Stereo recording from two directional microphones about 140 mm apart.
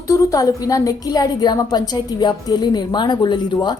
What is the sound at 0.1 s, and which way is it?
A woman's voice, 25° left (ahead or behind).